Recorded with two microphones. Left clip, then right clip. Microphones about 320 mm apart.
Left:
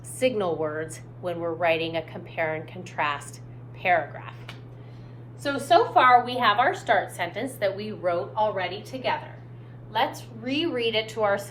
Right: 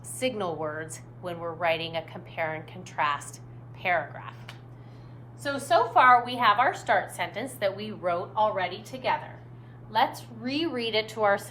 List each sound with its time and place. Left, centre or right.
0.2 s a woman's voice: centre
9.9 s a woman's voice: right